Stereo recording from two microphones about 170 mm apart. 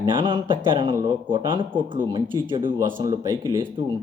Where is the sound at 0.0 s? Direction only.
25° right (ahead or behind).